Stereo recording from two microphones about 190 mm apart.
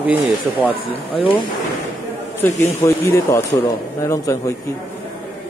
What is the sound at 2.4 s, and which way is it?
Speech, 15° left (ahead or behind).